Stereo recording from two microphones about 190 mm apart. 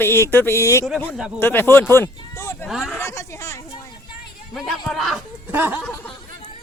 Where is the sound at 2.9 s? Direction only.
15° left (ahead or behind).